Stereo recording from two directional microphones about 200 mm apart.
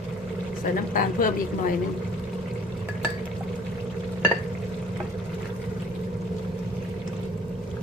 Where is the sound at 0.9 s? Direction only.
45° left (ahead or behind).